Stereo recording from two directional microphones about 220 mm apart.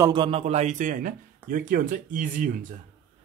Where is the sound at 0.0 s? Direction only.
20° right (ahead or behind); by 2.5 s 35° right (ahead or behind).